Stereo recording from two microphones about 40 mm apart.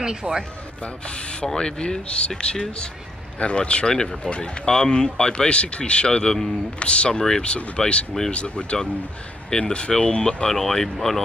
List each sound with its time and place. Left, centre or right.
0.0 s speech: centre
0.8 s speech: left
3.9 s speech: centre
4.2 s speech: left
4.6 s speech: centre
5.3 s speech: left
7.1 s speech: centre
7.5 s speech: left
10.5 s speech: centre